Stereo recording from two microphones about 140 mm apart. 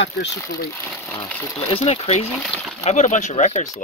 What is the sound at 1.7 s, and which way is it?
Speech, 45° left (ahead or behind).